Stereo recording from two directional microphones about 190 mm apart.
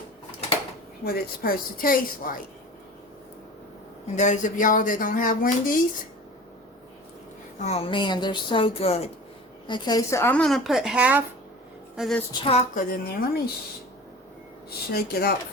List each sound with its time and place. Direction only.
1.0 s speech: 50° left (ahead or behind)
4.0 s speech: 40° left (ahead or behind)
7.6 s a woman's voice: 30° left (ahead or behind); by 12.2 s centre (ahead or behind)
12.3 s speech: 30° left (ahead or behind); by 13.4 s 50° left (ahead or behind)
14.9 s speech: 55° left (ahead or behind)